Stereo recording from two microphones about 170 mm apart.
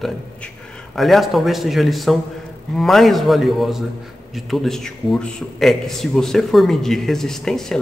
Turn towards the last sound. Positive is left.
turn(degrees=5)  # may be behind; listen again after turning